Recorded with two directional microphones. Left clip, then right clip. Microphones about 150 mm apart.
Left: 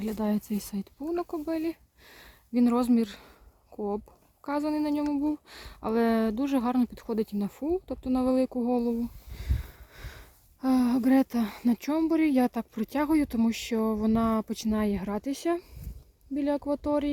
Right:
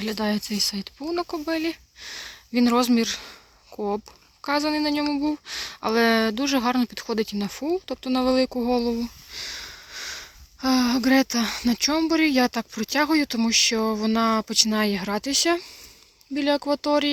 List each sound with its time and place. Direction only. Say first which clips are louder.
0.0 s speech: right 5 dB; 5° left (ahead or behind)
4.4 s speech: right 6 dB; centre (ahead or behind)